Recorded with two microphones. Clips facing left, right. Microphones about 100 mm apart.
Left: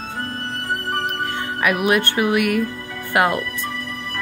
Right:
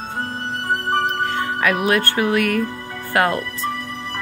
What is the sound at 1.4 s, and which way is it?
Music, 15° left (ahead or behind).